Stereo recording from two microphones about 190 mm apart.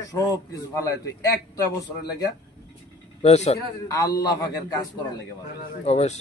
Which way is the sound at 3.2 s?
35° left (ahead or behind).